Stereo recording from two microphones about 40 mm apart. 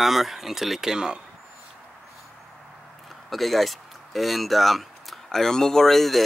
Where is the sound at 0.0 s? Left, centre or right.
Centre.